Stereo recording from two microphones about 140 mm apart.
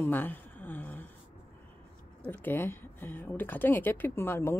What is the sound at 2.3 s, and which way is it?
Speech, 15° left (ahead or behind).